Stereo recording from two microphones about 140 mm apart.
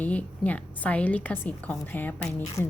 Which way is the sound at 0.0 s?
10° left (ahead or behind).